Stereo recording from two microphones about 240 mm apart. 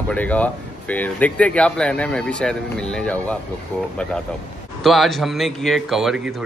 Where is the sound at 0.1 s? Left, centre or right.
Centre.